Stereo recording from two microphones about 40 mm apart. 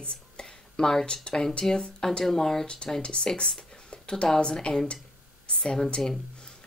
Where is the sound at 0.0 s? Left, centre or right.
Left.